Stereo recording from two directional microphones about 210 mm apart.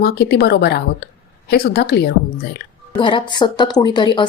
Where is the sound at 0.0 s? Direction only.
50° left (ahead or behind).